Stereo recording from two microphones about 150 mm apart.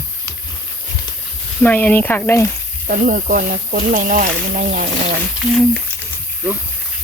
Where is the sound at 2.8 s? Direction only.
65° right (ahead or behind).